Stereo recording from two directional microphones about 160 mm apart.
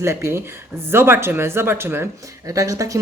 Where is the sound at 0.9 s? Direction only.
15° right (ahead or behind).